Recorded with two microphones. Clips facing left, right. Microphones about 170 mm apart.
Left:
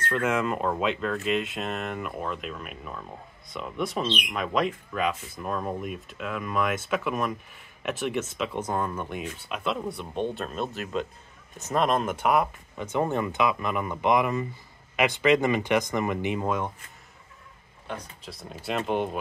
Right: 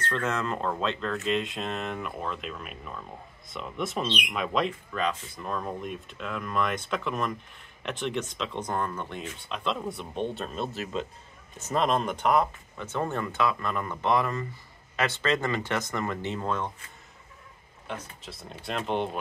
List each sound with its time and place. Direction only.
0.0 s speech: 10° left (ahead or behind)
17.8 s speech: centre (ahead or behind)